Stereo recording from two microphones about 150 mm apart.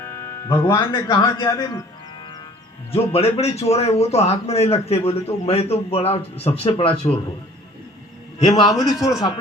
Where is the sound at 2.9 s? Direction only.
40° left (ahead or behind).